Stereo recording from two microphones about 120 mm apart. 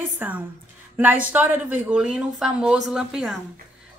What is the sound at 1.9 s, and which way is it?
A woman's voice, 5° right (ahead or behind).